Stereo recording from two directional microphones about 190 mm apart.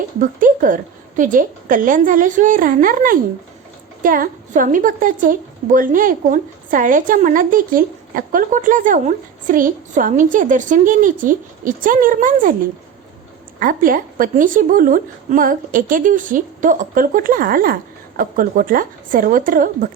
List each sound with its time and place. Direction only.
0.2 s a woman's voice: 45° right (ahead or behind)
13.6 s a woman's voice: 45° right (ahead or behind)